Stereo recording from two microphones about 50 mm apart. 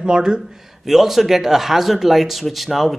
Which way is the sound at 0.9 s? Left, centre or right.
Centre.